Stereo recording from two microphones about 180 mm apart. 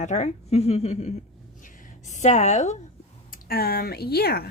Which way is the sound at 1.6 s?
40° left (ahead or behind).